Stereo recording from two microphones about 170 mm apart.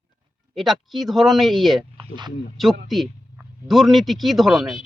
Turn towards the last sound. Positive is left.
turn(degrees=0)  # may be behind; listen again after turning